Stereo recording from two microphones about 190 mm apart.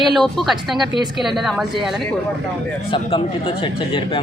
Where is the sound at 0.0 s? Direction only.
Centre (ahead or behind).